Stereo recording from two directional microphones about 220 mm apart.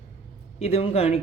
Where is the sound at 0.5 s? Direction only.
30° left (ahead or behind).